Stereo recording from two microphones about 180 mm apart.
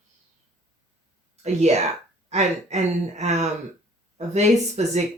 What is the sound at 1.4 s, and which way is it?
Speech, 40° right (ahead or behind).